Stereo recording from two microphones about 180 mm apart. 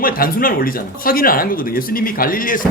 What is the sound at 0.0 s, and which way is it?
Speech, 55° left (ahead or behind).